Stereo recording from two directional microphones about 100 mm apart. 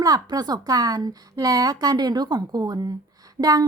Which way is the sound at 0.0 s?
40° right (ahead or behind).